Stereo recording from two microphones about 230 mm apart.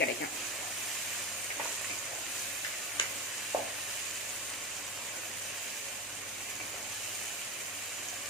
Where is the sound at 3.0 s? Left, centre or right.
Left.